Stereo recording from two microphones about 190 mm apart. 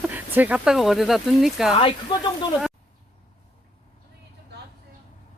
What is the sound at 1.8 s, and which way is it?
Speech, 25° left (ahead or behind).